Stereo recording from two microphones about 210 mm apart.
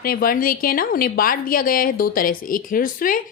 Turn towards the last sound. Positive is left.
turn(degrees=40)  # may be behind; listen again after turning